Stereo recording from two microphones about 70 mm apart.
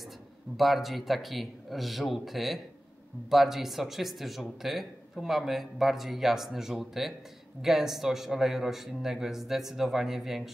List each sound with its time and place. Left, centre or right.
0.6 s speech: centre